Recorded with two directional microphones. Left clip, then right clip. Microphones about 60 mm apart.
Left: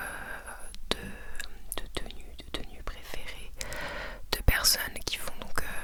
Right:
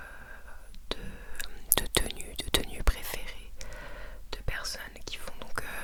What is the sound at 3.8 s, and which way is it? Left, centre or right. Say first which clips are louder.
Whispering: left 9 dB; left.